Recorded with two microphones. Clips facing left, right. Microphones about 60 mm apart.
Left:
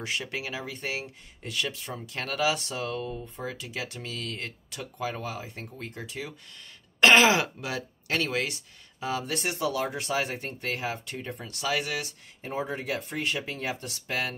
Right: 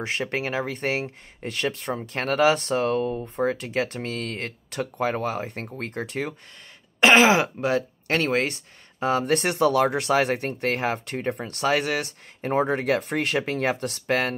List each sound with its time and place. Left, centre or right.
0.0 s speech: right
7.0 s throat clearing: right
7.7 s speech: right